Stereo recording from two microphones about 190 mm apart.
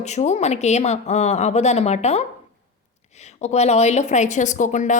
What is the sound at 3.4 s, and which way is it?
A woman's voice, 35° left (ahead or behind).